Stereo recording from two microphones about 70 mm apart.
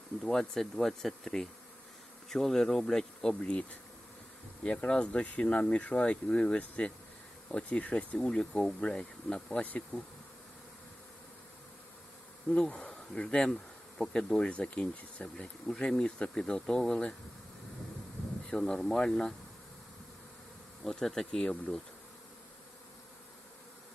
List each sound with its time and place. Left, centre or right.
0.2 s speech: centre
12.5 s speech: centre
18.4 s speech: centre
20.8 s speech: centre